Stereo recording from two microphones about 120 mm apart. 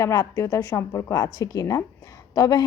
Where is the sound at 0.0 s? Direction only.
25° left (ahead or behind).